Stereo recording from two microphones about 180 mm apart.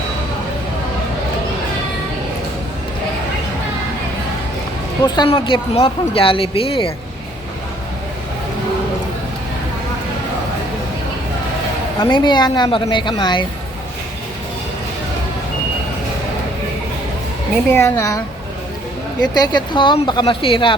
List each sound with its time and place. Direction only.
5.0 s speech: 25° left (ahead or behind)
11.9 s a woman's voice: 25° left (ahead or behind)
17.7 s a woman's voice: 15° left (ahead or behind)
19.3 s a woman's voice: 25° left (ahead or behind)